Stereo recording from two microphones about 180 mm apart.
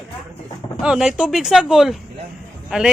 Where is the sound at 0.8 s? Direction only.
5° right (ahead or behind).